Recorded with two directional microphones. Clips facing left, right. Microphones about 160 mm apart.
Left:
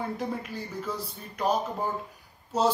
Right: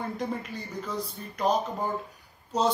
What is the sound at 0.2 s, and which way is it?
Speech, 5° left (ahead or behind).